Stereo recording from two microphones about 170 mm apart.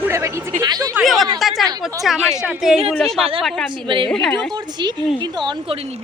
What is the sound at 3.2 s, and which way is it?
Speech, 35° right (ahead or behind).